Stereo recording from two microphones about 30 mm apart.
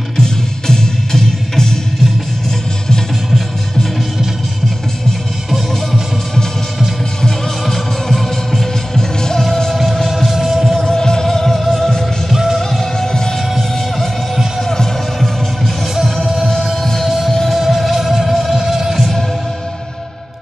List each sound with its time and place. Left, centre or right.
1.1 s music: centre
7.6 s music: centre
8.9 s music: centre
10.0 s music: centre
10.9 s music: left
13.0 s music: centre
13.6 s music: centre
14.6 s music: centre
17.5 s music: centre
18.3 s music: centre
18.6 s music: centre